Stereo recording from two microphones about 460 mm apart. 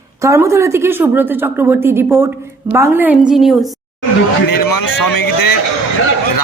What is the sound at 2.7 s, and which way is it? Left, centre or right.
Speech, centre.